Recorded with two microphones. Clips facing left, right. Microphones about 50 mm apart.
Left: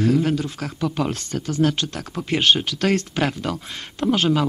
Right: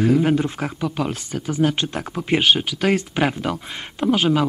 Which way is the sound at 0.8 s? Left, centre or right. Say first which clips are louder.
Left 3 dB; centre.